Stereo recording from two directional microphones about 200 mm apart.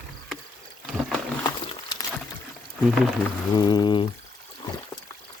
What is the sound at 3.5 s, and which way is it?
Pour, 20° left (ahead or behind).